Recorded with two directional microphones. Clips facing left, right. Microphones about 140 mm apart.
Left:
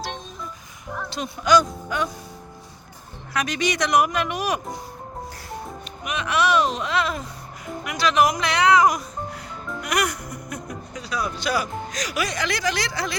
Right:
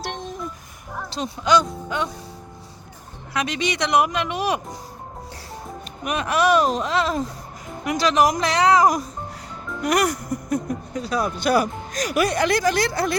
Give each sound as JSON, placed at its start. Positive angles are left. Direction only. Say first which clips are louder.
{"t": 0.0, "sound": "a sound", "louder": "right 2 dB", "side_deg": -65}
{"t": 1.1, "sound": "speech", "louder": "even", "side_deg": -30}
{"t": 3.3, "sound": "speech", "louder": "even", "side_deg": -25}
{"t": 6.1, "sound": "speech", "louder": "right 3 dB", "side_deg": -40}